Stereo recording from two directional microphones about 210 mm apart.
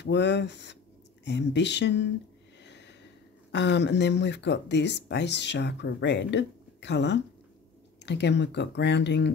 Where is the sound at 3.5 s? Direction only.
55° left (ahead or behind).